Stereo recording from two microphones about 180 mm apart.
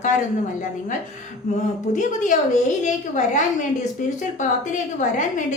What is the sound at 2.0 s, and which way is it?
A woman's voice, 45° left (ahead or behind).